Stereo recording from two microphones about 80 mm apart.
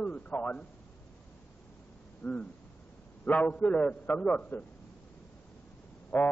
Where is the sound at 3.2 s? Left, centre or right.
Centre.